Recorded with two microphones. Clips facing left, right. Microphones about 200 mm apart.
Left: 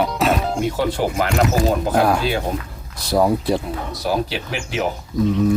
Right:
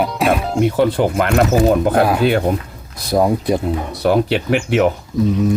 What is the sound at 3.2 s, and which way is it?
Speech, 15° right (ahead or behind).